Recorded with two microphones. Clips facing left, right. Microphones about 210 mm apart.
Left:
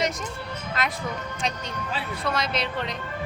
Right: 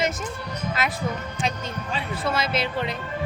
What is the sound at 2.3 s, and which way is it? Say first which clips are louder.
Speech: right 2 dB; 5° right (ahead or behind).